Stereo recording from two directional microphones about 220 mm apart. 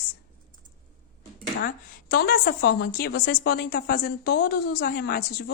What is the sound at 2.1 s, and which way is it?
A woman's voice, 45° left (ahead or behind).